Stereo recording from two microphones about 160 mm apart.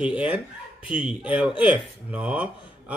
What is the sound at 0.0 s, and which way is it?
A man's voice, 5° right (ahead or behind).